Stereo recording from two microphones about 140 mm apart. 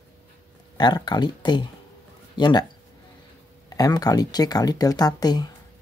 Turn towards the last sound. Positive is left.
turn(degrees=30)  # may be behind; listen again after turning